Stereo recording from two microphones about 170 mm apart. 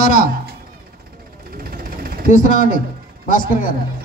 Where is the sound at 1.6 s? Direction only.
60° right (ahead or behind).